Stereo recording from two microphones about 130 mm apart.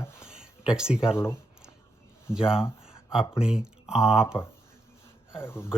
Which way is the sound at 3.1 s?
5° right (ahead or behind).